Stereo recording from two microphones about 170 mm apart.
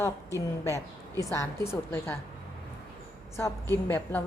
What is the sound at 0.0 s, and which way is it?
A woman's voice, 15° left (ahead or behind).